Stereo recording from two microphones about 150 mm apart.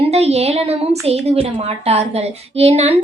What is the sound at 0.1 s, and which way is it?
A woman's voice, 45° right (ahead or behind).